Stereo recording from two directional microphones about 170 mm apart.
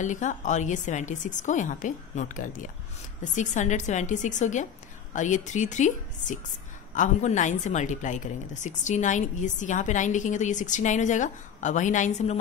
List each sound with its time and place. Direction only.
0.0 s a woman's voice: 45° left (ahead or behind)